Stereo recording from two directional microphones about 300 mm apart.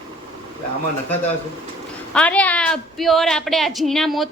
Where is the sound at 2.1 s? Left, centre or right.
Centre.